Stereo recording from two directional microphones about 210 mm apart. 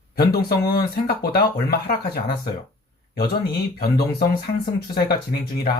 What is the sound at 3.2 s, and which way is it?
Speech, 50° left (ahead or behind).